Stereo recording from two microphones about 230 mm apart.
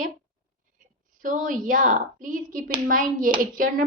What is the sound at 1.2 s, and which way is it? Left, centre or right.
Speech, right.